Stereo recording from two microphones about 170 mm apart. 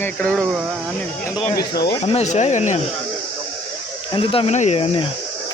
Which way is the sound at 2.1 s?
40° left (ahead or behind).